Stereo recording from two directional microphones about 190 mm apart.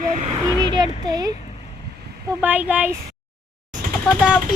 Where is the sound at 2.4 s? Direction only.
10° right (ahead or behind).